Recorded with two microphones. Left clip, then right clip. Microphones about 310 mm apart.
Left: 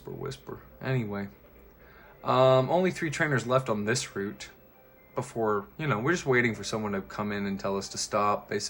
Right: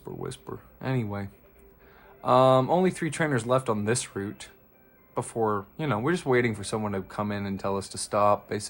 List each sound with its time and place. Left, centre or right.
0.2 s speech: centre